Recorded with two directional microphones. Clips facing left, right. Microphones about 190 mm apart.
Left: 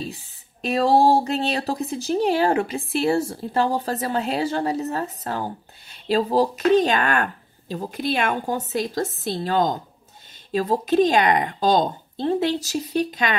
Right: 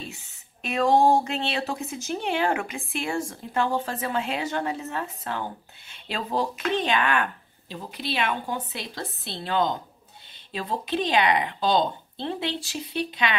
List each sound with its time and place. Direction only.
0.0 s a woman's voice: 35° left (ahead or behind)